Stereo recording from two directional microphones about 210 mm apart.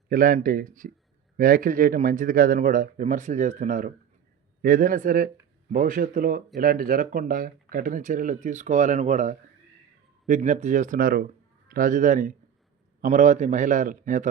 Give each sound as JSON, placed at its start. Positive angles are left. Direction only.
{"t": 0.1, "sound": "speech", "side_deg": -40}